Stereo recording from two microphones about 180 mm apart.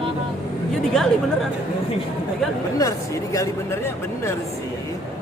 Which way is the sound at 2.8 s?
20° left (ahead or behind).